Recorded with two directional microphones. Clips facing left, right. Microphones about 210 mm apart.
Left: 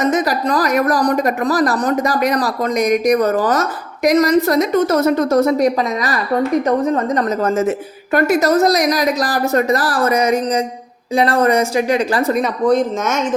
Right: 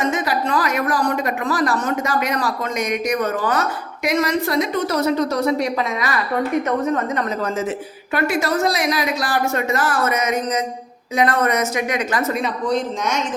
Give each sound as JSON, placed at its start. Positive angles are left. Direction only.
{"t": 0.0, "sound": "speech", "side_deg": 40}
{"t": 7.4, "sound": "speech", "side_deg": 45}